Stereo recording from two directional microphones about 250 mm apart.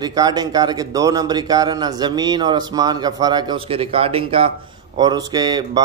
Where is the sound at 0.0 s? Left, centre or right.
Centre.